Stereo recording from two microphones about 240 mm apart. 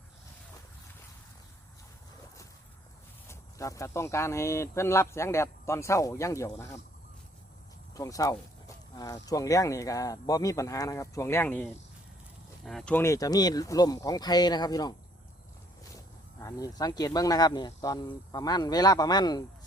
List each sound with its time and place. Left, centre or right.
3.2 s speech: centre
7.9 s speech: centre
16.4 s speech: centre